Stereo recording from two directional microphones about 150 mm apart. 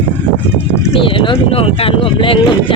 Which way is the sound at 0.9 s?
35° left (ahead or behind).